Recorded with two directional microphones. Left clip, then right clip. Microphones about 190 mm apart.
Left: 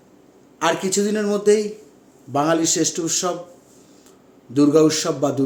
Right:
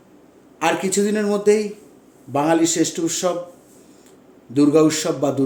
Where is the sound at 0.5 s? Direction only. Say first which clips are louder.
Right 1 dB; 10° left (ahead or behind).